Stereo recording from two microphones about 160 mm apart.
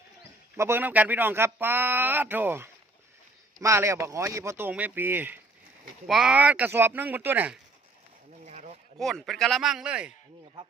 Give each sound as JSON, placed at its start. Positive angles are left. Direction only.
{"t": 0.5, "sound": "speech", "side_deg": -15}
{"t": 8.4, "sound": "a sound", "side_deg": -50}
{"t": 9.0, "sound": "a man's voice", "side_deg": 0}